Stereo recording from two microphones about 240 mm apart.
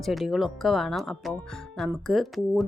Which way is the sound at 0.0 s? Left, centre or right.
Centre.